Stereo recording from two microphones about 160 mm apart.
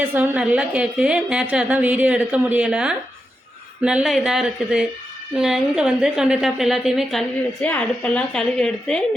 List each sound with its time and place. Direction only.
0.1 s a woman's voice: 10° right (ahead or behind)